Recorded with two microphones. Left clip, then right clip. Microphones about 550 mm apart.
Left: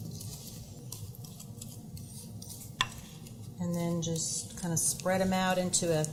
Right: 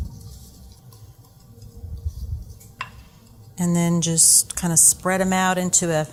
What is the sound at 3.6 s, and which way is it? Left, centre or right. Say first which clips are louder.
A woman's voice: right 11 dB; right.